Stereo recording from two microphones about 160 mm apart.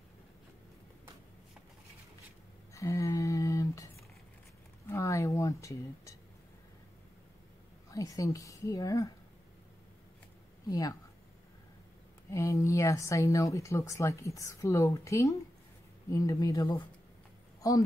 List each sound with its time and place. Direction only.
2.7 s a sound: 20° left (ahead or behind)
7.9 s speech: 20° left (ahead or behind)
10.7 s speech: 20° left (ahead or behind)
12.3 s speech: 20° left (ahead or behind)